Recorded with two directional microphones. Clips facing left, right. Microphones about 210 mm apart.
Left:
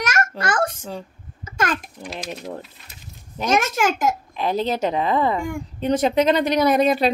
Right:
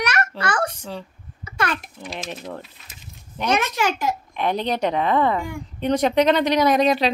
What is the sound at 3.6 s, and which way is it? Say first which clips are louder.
Speech: left 3 dB; 50° left (ahead or behind).